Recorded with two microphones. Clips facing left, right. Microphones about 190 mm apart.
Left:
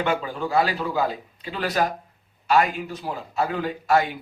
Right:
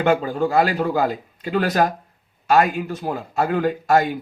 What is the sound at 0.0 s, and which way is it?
A man's voice, 45° right (ahead or behind).